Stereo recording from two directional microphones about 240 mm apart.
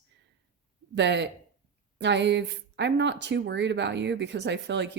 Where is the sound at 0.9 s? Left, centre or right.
Right.